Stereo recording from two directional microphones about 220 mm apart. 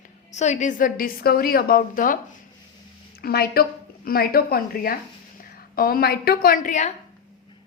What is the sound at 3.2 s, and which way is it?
A woman's voice, 45° left (ahead or behind).